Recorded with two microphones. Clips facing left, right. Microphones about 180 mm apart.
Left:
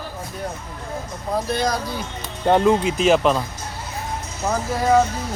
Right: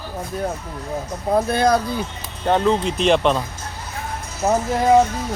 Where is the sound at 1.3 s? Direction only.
55° right (ahead or behind).